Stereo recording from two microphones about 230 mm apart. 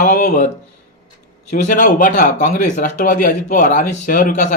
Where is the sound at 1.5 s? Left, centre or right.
Left.